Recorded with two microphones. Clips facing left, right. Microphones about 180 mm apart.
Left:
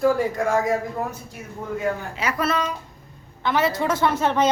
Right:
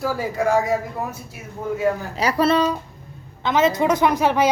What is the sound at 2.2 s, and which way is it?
Speech, 35° right (ahead or behind).